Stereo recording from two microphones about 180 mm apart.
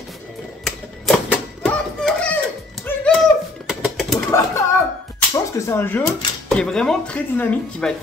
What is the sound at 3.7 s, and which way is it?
Bird, centre (ahead or behind).